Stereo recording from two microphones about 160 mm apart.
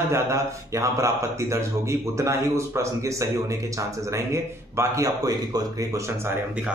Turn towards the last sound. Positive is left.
turn(degrees=-25)  # may be behind; listen again after turning